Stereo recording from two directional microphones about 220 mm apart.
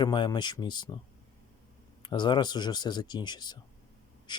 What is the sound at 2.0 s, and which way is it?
Speech, 20° left (ahead or behind).